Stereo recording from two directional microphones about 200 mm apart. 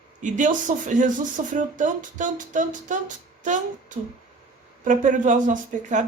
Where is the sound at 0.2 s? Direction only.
40° right (ahead or behind).